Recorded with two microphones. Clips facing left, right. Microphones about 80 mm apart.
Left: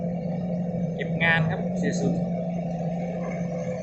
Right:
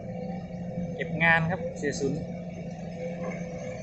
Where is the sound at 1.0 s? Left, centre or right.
Centre.